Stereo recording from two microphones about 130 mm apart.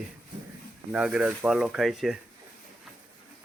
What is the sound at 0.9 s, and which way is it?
Speech, 10° right (ahead or behind).